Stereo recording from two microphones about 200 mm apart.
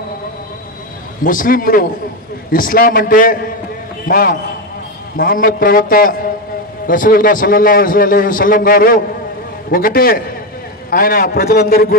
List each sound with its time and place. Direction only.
1.2 s a man's voice: 45° left (ahead or behind)